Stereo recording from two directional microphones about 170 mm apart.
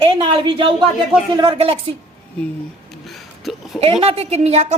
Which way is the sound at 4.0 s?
35° right (ahead or behind).